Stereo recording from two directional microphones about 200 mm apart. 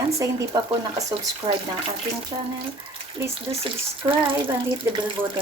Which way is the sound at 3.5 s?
25° right (ahead or behind).